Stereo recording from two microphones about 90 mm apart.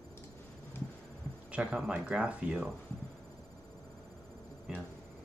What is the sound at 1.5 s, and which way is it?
Speech, 10° right (ahead or behind).